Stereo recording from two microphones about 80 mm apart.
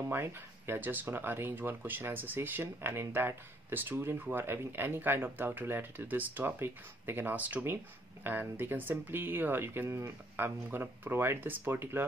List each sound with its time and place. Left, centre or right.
0.1 s speech: right